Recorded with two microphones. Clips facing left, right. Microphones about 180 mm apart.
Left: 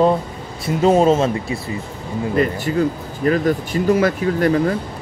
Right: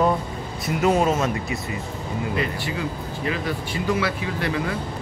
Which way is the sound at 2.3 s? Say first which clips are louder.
Left 10 dB; 45° left (ahead or behind).